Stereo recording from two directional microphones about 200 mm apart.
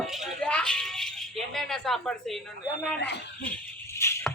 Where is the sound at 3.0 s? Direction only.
60° left (ahead or behind).